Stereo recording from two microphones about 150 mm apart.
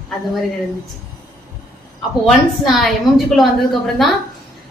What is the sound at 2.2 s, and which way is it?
A woman's voice, centre (ahead or behind).